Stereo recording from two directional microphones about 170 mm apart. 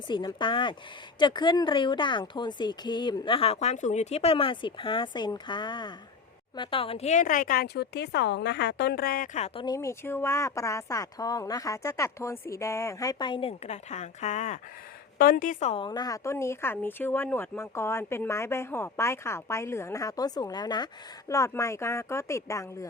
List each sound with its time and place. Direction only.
0.1 s a woman's voice: 25° left (ahead or behind); by 9.5 s 50° left (ahead or behind)
9.6 s speech: 20° left (ahead or behind); by 14.6 s 45° left (ahead or behind)
15.2 s a woman's voice: 60° left (ahead or behind)
15.7 s speech: 25° left (ahead or behind)